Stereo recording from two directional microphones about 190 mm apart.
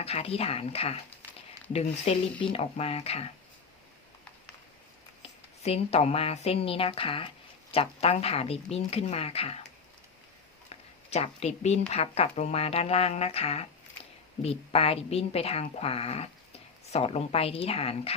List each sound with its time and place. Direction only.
0.0 s speech: 30° left (ahead or behind)
5.6 s speech: 35° left (ahead or behind)
10.7 s a sound: 35° left (ahead or behind)
11.9 s speech: 30° left (ahead or behind)